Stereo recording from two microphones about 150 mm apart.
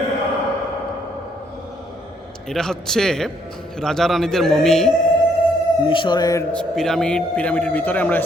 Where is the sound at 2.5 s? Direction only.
5° left (ahead or behind).